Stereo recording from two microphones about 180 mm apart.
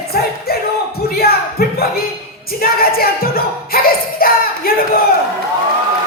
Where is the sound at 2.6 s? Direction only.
55° left (ahead or behind).